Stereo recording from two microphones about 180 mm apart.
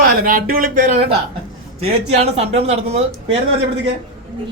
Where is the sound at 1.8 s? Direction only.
35° right (ahead or behind).